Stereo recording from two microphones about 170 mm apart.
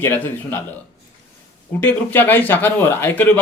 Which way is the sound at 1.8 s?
10° left (ahead or behind).